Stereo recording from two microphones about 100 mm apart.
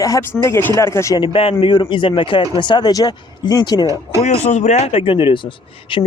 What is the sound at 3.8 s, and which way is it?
Speech, 35° right (ahead or behind).